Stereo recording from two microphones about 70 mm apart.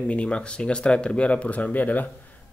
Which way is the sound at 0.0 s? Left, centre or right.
Centre.